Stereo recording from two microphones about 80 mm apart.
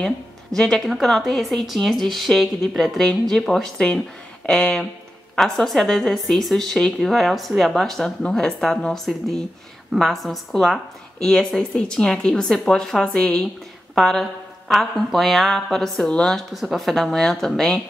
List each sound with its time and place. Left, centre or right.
0.0 s a woman's voice: centre